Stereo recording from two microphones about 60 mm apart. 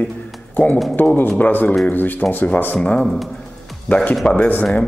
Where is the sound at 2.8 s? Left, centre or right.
Centre.